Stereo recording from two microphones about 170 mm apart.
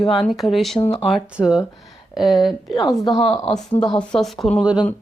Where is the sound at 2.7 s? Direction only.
25° left (ahead or behind).